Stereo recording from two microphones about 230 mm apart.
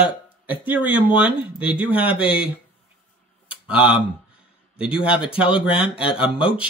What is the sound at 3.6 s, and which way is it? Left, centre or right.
Speech, centre.